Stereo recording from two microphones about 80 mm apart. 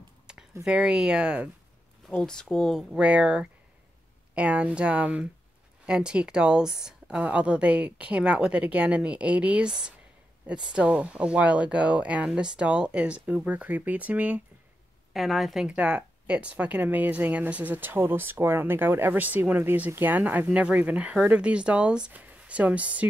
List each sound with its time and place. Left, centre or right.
0.3 s a sound: centre
0.7 s a woman's voice: centre
2.2 s speech: centre
2.9 s a woman's voice: centre
15.1 s speech: centre
15.7 s a woman's voice: centre